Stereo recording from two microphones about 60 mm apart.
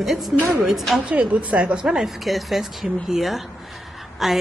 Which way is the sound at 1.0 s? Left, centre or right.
Right.